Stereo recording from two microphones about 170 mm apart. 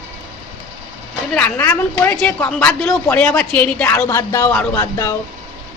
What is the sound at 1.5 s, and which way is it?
A woman's voice, 10° left (ahead or behind).